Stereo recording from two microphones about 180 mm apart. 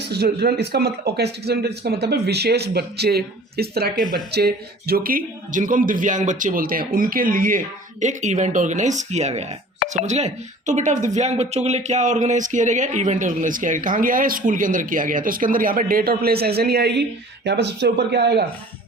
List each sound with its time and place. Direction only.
0.0 s speech: 65° right (ahead or behind)